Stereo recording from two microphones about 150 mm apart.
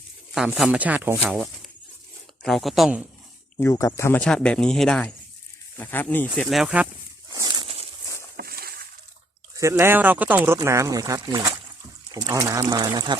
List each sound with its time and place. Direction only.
0.3 s speech: centre (ahead or behind)
2.4 s speech: centre (ahead or behind)
3.6 s speech: 20° left (ahead or behind)
4.2 s speech: 5° left (ahead or behind)
7.3 s a sound: 25° right (ahead or behind)
8.4 s vehicle: 90° right
9.6 s speech: 20° right (ahead or behind)